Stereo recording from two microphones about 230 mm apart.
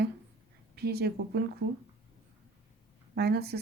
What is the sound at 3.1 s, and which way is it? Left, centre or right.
Speech, right.